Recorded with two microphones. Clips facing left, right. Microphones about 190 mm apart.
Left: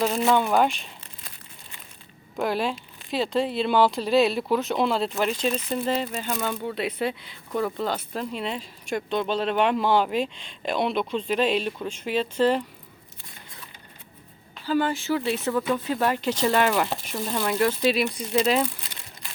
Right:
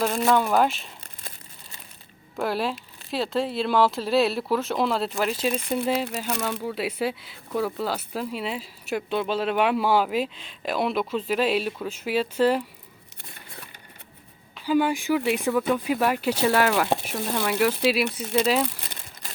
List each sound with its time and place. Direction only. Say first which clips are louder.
0.0 s speech: even; 5° left (ahead or behind)
2.3 s speech: left 1 dB; centre (ahead or behind)
14.6 s speech: right 2 dB; 10° right (ahead or behind)
19.2 s crumpling: right 3 dB; 40° right (ahead or behind)